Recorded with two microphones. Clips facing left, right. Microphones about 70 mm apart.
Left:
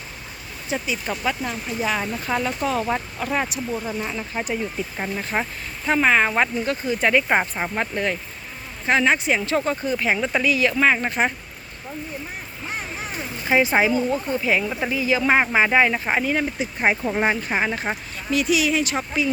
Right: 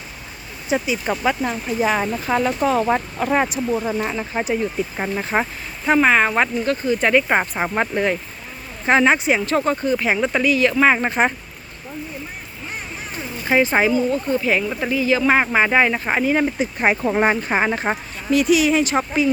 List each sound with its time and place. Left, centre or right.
0.7 s speech: centre
1.0 s speech: right
2.1 s speech: centre
2.4 s speech: right
4.4 s speech: right
6.0 s speech: centre
7.6 s speech: right
9.5 s speech: centre
10.9 s speech: right
13.6 s speech: centre
16.8 s speech: right
17.5 s speech: right